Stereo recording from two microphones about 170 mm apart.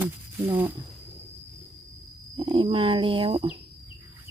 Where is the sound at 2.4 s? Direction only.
30° right (ahead or behind).